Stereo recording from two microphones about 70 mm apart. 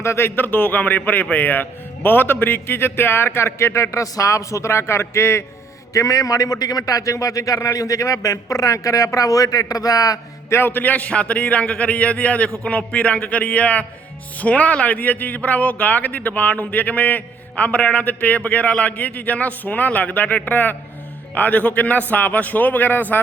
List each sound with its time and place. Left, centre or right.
0.0 s a man's voice: left
5.9 s speech: left
10.5 s speech: left